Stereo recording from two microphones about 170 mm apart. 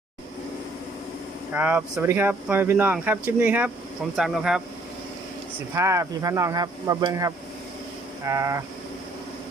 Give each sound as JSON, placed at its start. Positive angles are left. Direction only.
{"t": 1.5, "sound": "speech", "side_deg": -10}
{"t": 5.7, "sound": "speech", "side_deg": -15}